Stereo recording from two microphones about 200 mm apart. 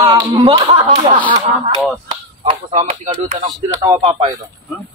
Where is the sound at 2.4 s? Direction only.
30° right (ahead or behind).